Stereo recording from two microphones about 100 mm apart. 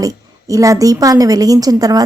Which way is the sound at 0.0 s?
35° right (ahead or behind).